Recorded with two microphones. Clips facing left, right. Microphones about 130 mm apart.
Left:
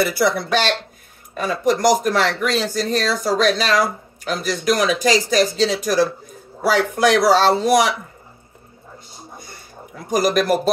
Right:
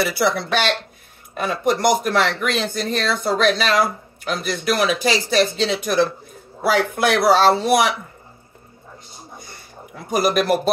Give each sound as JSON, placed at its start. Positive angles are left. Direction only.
{"t": 0.0, "sound": "a man's voice", "side_deg": 50}
{"t": 9.9, "sound": "a man's voice", "side_deg": 40}